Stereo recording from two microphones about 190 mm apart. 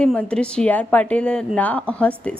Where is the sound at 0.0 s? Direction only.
5° left (ahead or behind).